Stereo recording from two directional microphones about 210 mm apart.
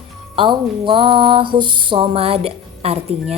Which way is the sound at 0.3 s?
25° right (ahead or behind).